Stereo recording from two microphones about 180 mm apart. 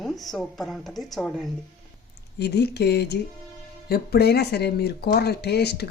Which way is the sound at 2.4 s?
65° left (ahead or behind).